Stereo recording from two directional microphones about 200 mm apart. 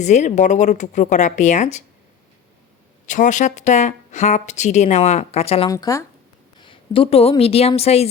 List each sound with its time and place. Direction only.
0.0 s a woman's voice: 35° left (ahead or behind)
3.1 s a woman's voice: 40° left (ahead or behind)
5.6 s speech: 15° left (ahead or behind)
6.6 s speech: 25° left (ahead or behind)